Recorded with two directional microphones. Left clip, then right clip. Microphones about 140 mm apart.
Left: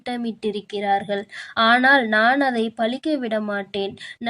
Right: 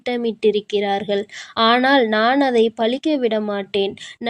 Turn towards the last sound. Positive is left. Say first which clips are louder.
# right 4 dB
turn(degrees=-10)  # may be behind; listen again after turning